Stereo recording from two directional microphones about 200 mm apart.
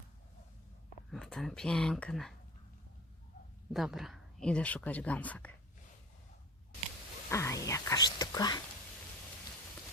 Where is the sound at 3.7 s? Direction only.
Centre (ahead or behind).